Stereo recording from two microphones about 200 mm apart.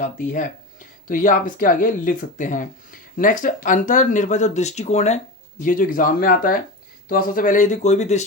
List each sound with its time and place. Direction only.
0.0 s speech: 40° left (ahead or behind)